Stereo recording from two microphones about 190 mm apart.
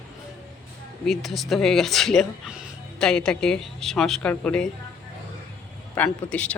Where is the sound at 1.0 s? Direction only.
Centre (ahead or behind).